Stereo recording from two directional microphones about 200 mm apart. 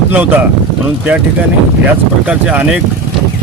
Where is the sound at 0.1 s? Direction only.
10° right (ahead or behind).